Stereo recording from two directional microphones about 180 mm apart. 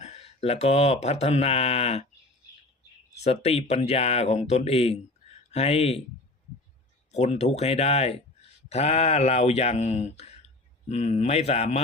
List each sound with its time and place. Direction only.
0.0 s speech: 35° left (ahead or behind)
3.2 s speech: 35° left (ahead or behind)
7.1 s speech: 35° left (ahead or behind)